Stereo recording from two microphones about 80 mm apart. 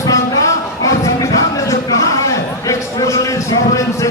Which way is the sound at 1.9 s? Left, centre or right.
Left.